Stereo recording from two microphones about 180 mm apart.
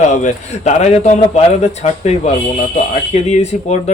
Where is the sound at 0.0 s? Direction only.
40° left (ahead or behind).